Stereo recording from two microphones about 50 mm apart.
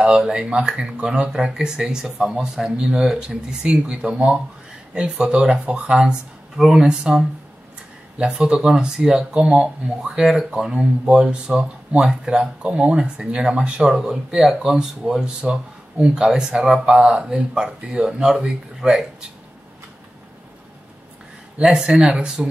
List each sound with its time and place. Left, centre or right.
0.0 s speech: centre
6.5 s speech: centre
8.2 s speech: centre
21.5 s speech: centre